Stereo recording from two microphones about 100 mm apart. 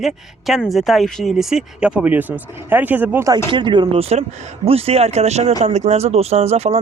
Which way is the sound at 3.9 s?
85° right.